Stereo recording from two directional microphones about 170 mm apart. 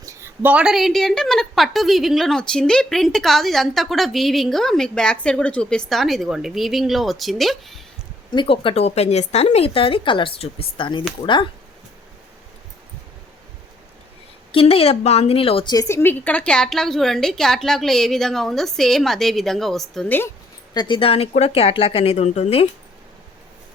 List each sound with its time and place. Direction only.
0.0 s a woman's voice: 15° right (ahead or behind); by 7.8 s centre (ahead or behind)
8.3 s speech: 30° left (ahead or behind)
14.5 s a woman's voice: 35° left (ahead or behind); by 20.3 s 10° left (ahead or behind)
20.7 s speech: 30° left (ahead or behind)